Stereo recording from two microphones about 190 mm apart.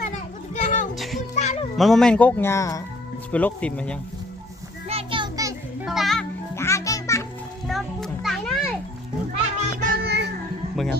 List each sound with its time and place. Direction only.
0.6 s music: 45° left (ahead or behind)
0.9 s music: centre (ahead or behind)
1.4 s music: 35° left (ahead or behind)
1.7 s speech: centre (ahead or behind)
4.9 s a sound: 30° right (ahead or behind)
5.8 s music: centre (ahead or behind)
6.6 s music: 15° left (ahead or behind)
7.7 s children playing: centre (ahead or behind)
9.3 s music: 35° right (ahead or behind)
10.0 s music: 60° right (ahead or behind)